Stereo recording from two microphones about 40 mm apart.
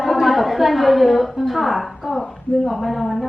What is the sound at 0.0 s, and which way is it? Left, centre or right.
A woman's voice, centre.